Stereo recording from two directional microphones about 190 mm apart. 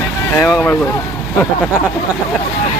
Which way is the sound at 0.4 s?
5° left (ahead or behind).